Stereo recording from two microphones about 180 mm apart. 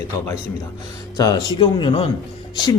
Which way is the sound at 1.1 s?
20° left (ahead or behind).